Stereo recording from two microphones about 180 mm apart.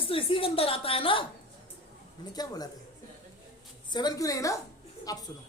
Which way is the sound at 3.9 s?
25° left (ahead or behind).